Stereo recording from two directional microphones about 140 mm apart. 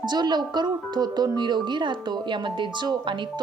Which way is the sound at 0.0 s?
30° right (ahead or behind).